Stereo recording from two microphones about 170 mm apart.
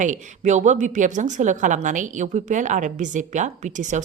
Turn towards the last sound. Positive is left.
turn(degrees=-45)  # may be behind; listen again after turning